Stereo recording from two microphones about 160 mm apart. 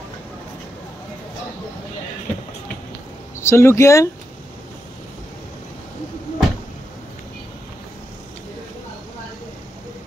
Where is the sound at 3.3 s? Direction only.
15° left (ahead or behind).